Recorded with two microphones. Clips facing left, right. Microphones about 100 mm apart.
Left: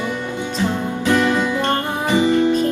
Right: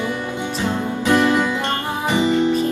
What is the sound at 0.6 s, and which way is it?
Music, 20° right (ahead or behind).